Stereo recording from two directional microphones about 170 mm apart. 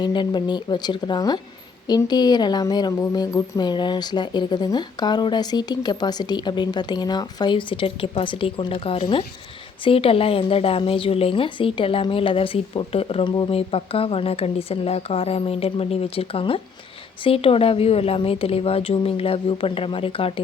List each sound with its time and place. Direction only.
0.0 s speech: 25° left (ahead or behind)